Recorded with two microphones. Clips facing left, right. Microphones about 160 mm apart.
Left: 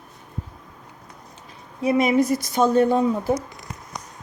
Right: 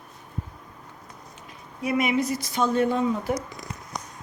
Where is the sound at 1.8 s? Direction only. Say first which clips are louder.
Left 5 dB; 35° left (ahead or behind).